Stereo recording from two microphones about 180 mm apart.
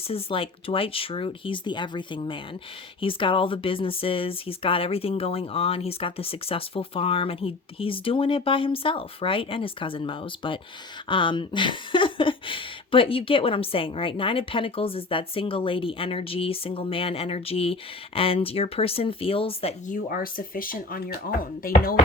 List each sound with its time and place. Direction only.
0.1 s speech: 30° left (ahead or behind)
19.9 s speech: 50° left (ahead or behind)